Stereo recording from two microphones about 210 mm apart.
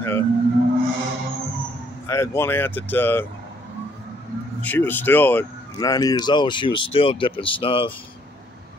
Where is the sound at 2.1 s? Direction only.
10° left (ahead or behind).